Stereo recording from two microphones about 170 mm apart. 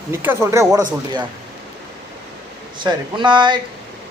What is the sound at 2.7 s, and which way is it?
Speech, 25° right (ahead or behind).